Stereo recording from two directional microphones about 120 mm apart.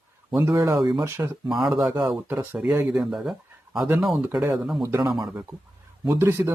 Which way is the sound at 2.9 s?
5° right (ahead or behind).